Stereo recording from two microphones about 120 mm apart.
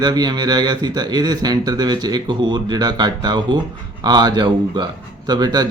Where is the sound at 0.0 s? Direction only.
35° right (ahead or behind).